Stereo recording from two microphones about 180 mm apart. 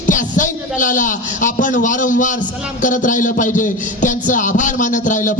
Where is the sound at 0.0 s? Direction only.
45° left (ahead or behind).